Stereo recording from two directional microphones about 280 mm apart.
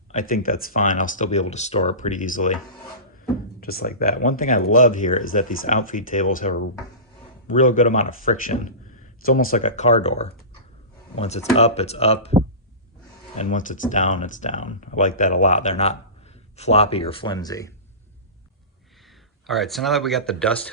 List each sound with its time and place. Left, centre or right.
0.1 s speech: left
3.6 s speech: left
13.3 s a man's voice: left
19.0 s speech: centre